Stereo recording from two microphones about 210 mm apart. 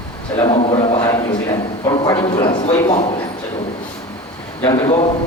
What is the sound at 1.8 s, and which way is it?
Speech, 20° left (ahead or behind).